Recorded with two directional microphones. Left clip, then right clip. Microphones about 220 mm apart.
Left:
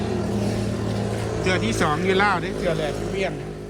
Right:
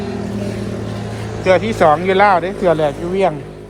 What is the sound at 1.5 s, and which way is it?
Speech, 10° left (ahead or behind).